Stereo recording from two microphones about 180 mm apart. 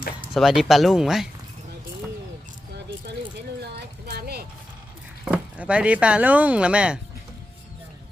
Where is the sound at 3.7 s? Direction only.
60° right (ahead or behind).